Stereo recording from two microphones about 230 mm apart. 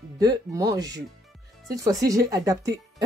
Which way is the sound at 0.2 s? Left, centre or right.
Centre.